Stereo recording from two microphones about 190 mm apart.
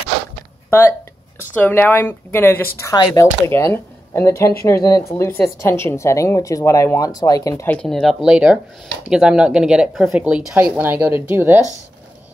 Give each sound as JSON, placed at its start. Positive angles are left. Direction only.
{"t": 0.7, "sound": "speech", "side_deg": 10}